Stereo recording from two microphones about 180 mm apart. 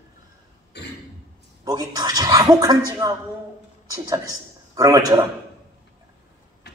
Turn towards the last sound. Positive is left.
turn(degrees=-20)  # may be behind; listen again after turning